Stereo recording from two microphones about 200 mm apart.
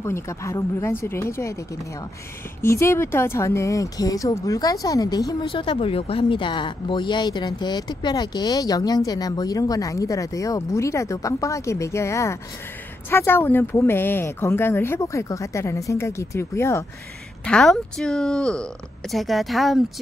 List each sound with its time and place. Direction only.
0.0 s speech: 15° left (ahead or behind)
2.6 s a woman's voice: 15° left (ahead or behind)